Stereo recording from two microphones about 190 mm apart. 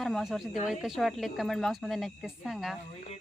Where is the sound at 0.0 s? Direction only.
Centre (ahead or behind).